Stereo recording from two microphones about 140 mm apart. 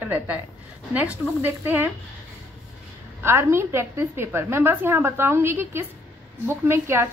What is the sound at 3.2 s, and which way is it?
A woman's voice, 15° right (ahead or behind).